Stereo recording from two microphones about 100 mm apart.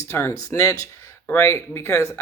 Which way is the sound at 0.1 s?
25° left (ahead or behind).